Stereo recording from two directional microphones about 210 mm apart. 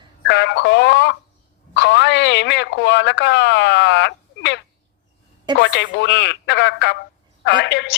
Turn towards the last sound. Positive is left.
turn(degrees=55)  # may be behind; listen again after turning